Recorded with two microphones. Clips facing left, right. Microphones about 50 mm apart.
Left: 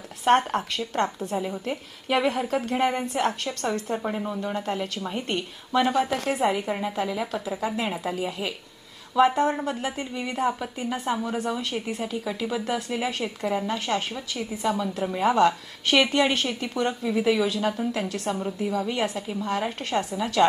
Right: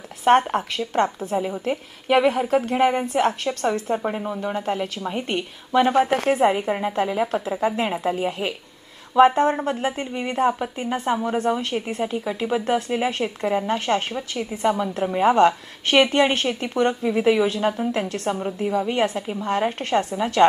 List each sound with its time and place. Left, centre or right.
0.4 s a woman's voice: right
1.4 s speech: centre
2.1 s a woman's voice: right
2.7 s speech: centre
3.1 s a woman's voice: right
3.9 s speech: centre
4.5 s a woman's voice: right
4.9 s a woman's voice: centre
13.7 s a woman's voice: right